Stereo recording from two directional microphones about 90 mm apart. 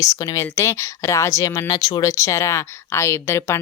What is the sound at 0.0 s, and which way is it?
Speech, 40° left (ahead or behind).